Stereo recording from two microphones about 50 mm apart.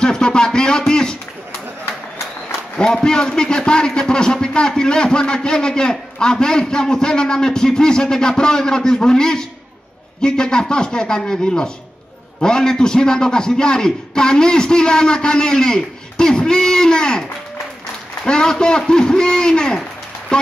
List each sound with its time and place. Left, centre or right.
0.0 s a sound: centre
2.8 s a man's voice: centre
18.2 s a man's voice: centre